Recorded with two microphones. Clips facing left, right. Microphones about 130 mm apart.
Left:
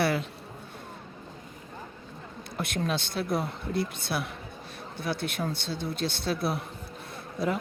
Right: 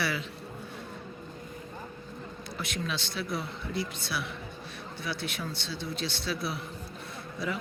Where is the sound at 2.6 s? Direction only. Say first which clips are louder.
Left 5 dB; 55° left (ahead or behind).